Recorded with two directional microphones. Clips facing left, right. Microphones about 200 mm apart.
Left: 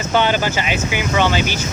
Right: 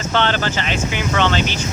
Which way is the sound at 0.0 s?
10° left (ahead or behind).